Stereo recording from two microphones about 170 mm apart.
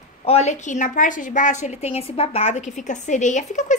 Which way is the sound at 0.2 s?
40° left (ahead or behind).